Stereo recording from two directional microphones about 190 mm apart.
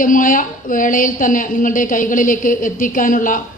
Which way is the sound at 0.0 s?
45° left (ahead or behind).